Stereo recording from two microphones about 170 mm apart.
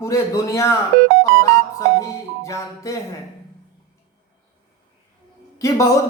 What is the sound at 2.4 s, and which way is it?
Speech, 20° left (ahead or behind).